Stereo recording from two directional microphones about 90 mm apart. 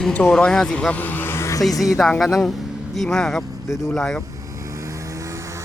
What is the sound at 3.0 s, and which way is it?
Speech, 10° left (ahead or behind).